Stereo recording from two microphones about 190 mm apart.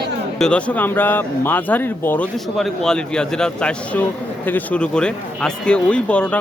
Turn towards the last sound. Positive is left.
turn(degrees=5)  # may be behind; listen again after turning